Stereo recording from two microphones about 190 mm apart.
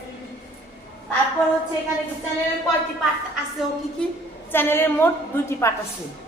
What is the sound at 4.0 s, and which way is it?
A woman's voice, 5° left (ahead or behind).